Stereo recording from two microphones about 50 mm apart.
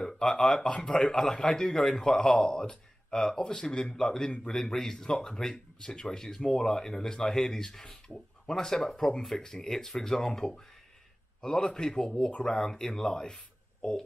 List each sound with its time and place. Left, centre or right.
0.0 s speech: centre
4.3 s a man's voice: left
4.6 s speech: centre